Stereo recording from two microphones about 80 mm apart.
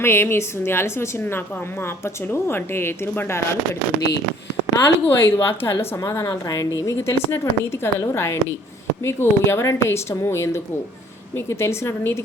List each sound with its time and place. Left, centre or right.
0.0 s a woman's voice: left
4.8 s speech: left
6.0 s a woman's voice: left